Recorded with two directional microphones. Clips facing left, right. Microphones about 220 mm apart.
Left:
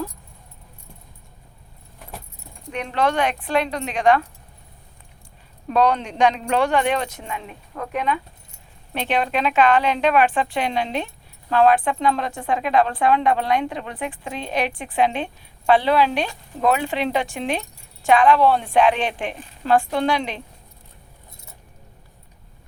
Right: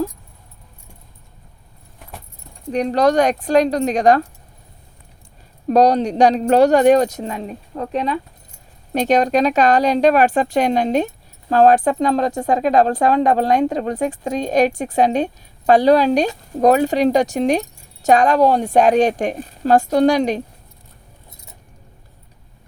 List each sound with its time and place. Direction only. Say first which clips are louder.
2.7 s speech: right 7 dB; 40° right (ahead or behind)
5.6 s speech: right 6 dB; 40° right (ahead or behind)